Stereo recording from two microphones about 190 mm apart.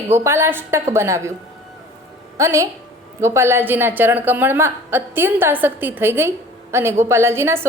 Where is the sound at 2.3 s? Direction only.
15° right (ahead or behind).